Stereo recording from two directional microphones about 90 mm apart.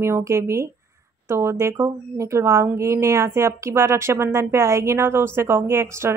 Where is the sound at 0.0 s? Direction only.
30° right (ahead or behind).